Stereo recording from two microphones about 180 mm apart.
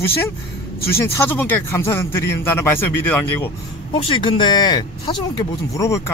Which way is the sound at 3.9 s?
30° left (ahead or behind).